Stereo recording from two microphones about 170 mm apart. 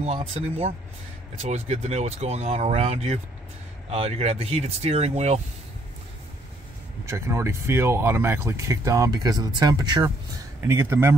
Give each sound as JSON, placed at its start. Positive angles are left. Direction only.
{"t": 0.0, "sound": "speech", "side_deg": -35}
{"t": 7.1, "sound": "speech", "side_deg": -15}